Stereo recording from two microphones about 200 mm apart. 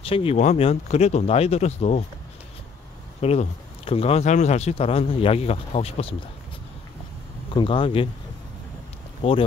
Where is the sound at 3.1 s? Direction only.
30° left (ahead or behind).